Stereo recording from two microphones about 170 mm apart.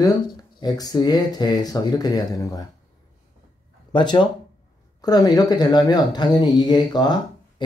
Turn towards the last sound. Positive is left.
turn(degrees=25)  # may be behind; listen again after turning